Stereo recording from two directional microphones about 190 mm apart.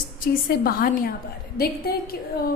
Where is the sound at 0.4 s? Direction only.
50° left (ahead or behind).